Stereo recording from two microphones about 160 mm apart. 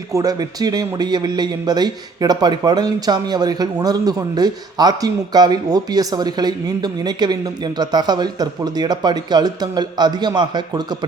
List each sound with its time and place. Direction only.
0.1 s speech: 20° right (ahead or behind)